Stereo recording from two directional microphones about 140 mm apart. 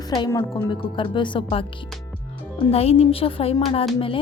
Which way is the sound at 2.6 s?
45° left (ahead or behind).